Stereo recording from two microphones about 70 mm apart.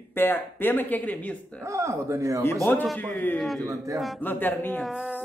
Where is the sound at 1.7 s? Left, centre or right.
Right.